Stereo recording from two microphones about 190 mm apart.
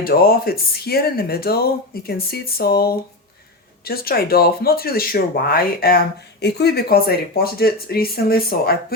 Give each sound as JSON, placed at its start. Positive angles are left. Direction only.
{"t": 0.0, "sound": "speech", "side_deg": 50}